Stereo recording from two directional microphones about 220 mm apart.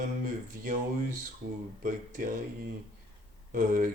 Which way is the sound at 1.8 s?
40° right (ahead or behind).